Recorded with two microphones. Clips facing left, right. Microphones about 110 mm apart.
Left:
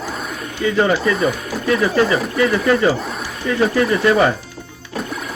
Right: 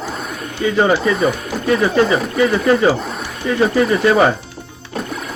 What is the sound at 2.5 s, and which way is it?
Speech, 25° right (ahead or behind).